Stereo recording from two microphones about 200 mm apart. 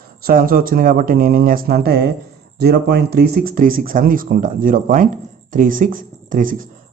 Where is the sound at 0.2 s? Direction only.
45° right (ahead or behind).